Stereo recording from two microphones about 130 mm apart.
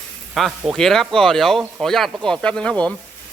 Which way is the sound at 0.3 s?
Centre (ahead or behind).